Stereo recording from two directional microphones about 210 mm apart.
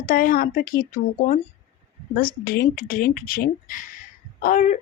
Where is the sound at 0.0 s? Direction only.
40° left (ahead or behind).